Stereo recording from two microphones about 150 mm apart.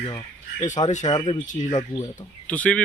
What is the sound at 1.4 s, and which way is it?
Speech, 60° left (ahead or behind).